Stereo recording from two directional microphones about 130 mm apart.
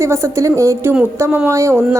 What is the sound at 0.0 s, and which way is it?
A woman's voice, 20° right (ahead or behind).